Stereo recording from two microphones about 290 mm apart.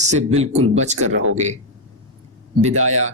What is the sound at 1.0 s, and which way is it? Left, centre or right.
Speech, right.